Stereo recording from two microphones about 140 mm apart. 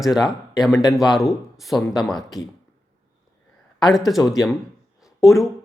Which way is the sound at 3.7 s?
Centre (ahead or behind).